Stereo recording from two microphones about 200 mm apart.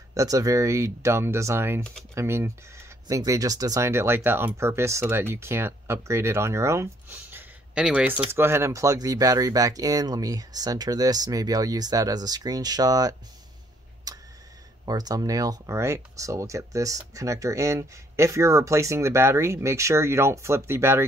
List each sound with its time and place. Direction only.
0.1 s speech: 15° right (ahead or behind)
14.1 s tick: 20° right (ahead or behind)
14.9 s speech: 20° right (ahead or behind)